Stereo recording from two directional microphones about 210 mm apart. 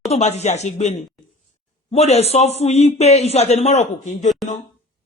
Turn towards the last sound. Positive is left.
turn(degrees=35)  # may be behind; listen again after turning